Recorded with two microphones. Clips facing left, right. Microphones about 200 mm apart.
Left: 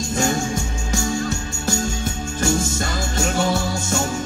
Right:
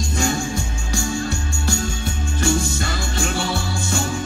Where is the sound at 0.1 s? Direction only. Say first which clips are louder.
Left 2 dB; 45° left (ahead or behind).